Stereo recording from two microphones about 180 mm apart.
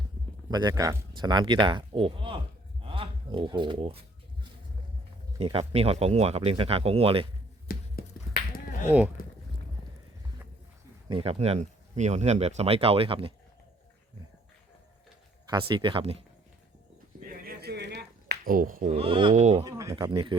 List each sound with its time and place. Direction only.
0.5 s speech: 20° right (ahead or behind)
5.4 s speech: 30° right (ahead or behind)
7.7 s a sound: 50° left (ahead or behind)
11.1 s speech: 30° right (ahead or behind)
15.4 s speech: 25° right (ahead or behind)
17.2 s a sound: 55° right (ahead or behind)
18.9 s speech: 30° right (ahead or behind)
19.3 s speech: 40° right (ahead or behind)
19.6 s speech: 15° right (ahead or behind)